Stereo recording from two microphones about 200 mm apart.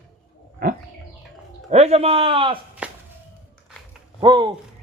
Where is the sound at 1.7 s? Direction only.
30° right (ahead or behind).